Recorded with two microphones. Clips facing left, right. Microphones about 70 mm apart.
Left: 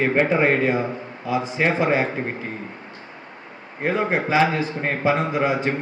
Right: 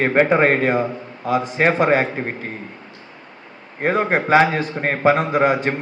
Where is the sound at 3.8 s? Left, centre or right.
Right.